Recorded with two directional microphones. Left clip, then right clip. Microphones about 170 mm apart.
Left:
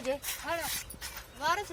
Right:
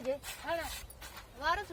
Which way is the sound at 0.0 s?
40° right (ahead or behind).